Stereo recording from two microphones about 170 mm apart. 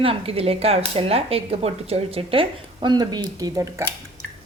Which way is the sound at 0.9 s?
35° right (ahead or behind).